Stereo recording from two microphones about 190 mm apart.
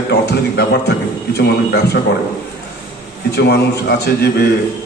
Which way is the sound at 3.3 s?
60° left (ahead or behind).